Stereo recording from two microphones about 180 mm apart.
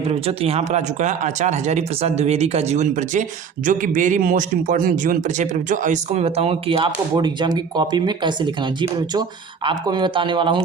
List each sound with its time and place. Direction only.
0.1 s speech: 35° right (ahead or behind)